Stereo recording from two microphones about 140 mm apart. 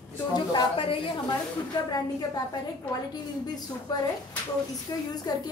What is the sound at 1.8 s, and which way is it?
A woman's voice, 30° left (ahead or behind).